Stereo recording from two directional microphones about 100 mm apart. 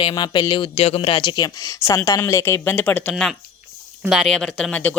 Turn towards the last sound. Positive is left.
turn(degrees=15)  # may be behind; listen again after turning